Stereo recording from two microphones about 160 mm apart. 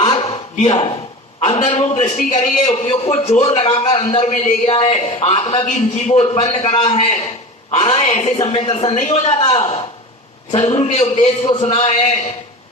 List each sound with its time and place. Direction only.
0.0 s a sound: 40° left (ahead or behind)
1.6 s a man's voice: 40° left (ahead or behind)
9.0 s a man's voice: 50° left (ahead or behind)